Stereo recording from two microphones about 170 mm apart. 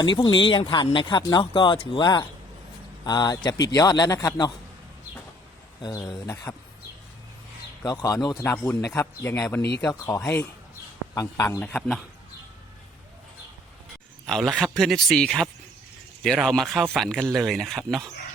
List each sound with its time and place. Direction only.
0.0 s speech: 25° left (ahead or behind)
5.8 s speech: 25° left (ahead or behind)
7.9 s speech: 20° left (ahead or behind); by 12.0 s 5° left (ahead or behind)
14.3 s speech: centre (ahead or behind)